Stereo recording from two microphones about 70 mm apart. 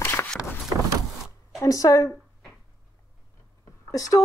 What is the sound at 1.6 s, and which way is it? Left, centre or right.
Speech, left.